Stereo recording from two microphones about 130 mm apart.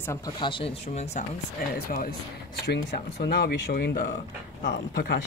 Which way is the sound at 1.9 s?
90° left.